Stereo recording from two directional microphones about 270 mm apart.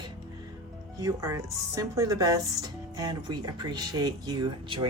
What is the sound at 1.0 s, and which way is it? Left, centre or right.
A woman's voice, centre.